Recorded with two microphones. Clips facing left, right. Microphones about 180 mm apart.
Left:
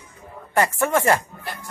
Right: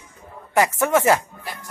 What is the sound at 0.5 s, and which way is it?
Speech, 15° right (ahead or behind).